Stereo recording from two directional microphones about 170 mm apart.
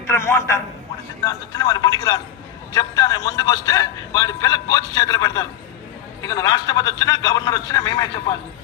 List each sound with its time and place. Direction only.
0.1 s a man's voice: 15° left (ahead or behind)